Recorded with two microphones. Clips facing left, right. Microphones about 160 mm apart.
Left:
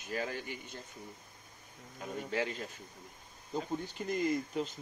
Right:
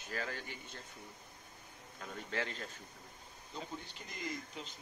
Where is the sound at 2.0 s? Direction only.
15° left (ahead or behind).